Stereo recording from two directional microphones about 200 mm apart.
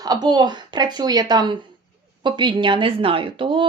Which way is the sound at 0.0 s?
20° right (ahead or behind).